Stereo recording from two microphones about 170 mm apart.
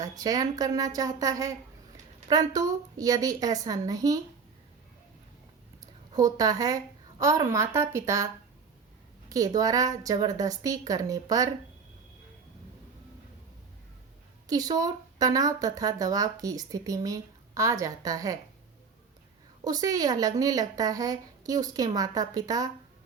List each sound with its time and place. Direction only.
0.0 s speech: 20° right (ahead or behind)
6.1 s a woman's voice: 20° right (ahead or behind)
9.3 s speech: 20° right (ahead or behind)
14.4 s speech: 20° right (ahead or behind)
19.6 s speech: 20° right (ahead or behind)